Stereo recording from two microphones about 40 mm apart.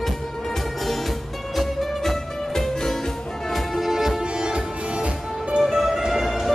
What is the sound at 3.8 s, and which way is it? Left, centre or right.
Music, centre.